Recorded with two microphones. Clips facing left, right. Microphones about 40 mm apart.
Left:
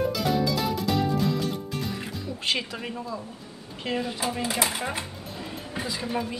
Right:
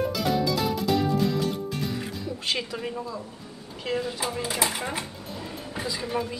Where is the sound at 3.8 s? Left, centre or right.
Centre.